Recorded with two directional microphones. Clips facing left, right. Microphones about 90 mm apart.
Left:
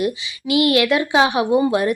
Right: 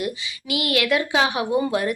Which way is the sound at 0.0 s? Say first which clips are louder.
Left 6 dB; 25° left (ahead or behind).